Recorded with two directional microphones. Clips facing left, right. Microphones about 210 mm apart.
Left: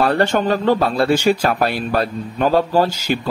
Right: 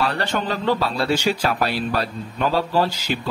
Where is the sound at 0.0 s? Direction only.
50° left (ahead or behind).